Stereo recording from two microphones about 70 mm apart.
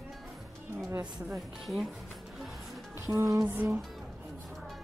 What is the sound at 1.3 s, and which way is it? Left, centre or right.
Speech, centre.